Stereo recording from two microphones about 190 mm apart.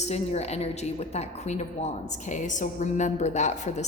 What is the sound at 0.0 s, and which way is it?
A woman's voice, 35° left (ahead or behind).